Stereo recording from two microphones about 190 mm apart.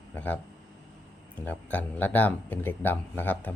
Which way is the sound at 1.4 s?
10° left (ahead or behind).